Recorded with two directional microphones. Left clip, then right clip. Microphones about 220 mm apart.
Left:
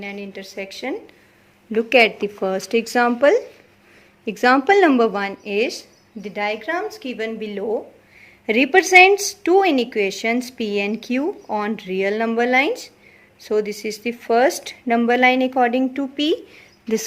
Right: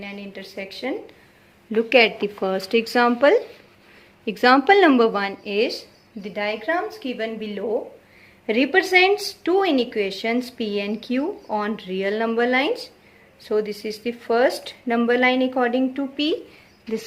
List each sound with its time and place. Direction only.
0.0 s speech: 35° left (ahead or behind)
1.7 s speech: 15° left (ahead or behind); by 16.4 s 30° left (ahead or behind)